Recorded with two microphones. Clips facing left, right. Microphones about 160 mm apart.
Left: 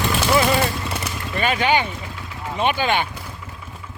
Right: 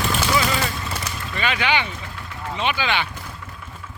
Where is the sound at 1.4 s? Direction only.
45° left (ahead or behind).